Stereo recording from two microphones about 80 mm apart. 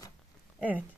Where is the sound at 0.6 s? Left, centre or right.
Centre.